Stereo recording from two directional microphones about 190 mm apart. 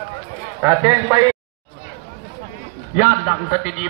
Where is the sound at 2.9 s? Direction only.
40° left (ahead or behind).